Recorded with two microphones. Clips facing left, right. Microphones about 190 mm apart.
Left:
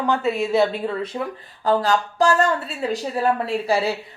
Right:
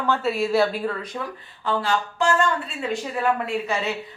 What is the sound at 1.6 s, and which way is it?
A woman's voice, 40° left (ahead or behind).